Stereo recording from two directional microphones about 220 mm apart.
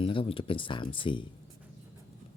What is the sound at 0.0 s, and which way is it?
Speech, 25° left (ahead or behind).